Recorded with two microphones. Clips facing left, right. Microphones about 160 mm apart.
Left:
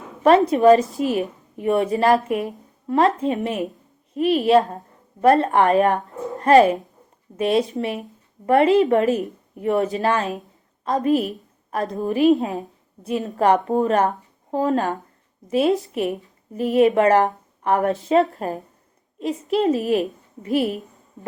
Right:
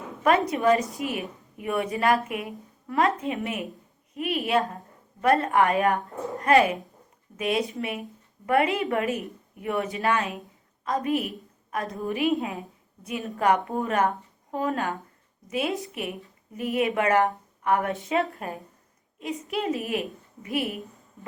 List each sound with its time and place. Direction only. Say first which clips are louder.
0.2 s a woman's voice: left 8 dB; 30° left (ahead or behind)